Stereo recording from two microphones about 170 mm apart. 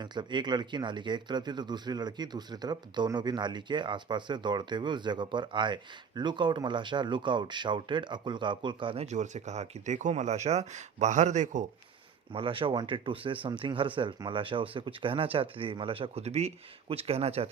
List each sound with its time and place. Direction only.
0.0 s speech: 25° right (ahead or behind)
9.0 s speech: 45° right (ahead or behind)
12.3 s speech: 30° right (ahead or behind)